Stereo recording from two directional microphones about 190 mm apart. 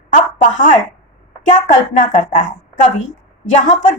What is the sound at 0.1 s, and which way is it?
A woman's voice, 40° left (ahead or behind).